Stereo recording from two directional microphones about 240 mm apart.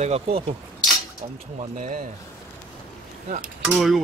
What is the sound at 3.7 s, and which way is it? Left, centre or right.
Speech, centre.